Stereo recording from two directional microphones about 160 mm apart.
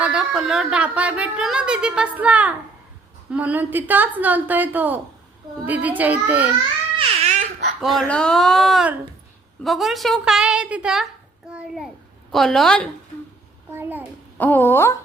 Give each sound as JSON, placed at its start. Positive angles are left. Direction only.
{"t": 0.0, "sound": "a woman's voice", "side_deg": -5}
{"t": 7.2, "sound": "baby laughter", "side_deg": -50}
{"t": 7.8, "sound": "a woman's voice", "side_deg": 0}
{"t": 13.7, "sound": "a woman's voice", "side_deg": -10}
{"t": 14.3, "sound": "a woman's voice", "side_deg": 10}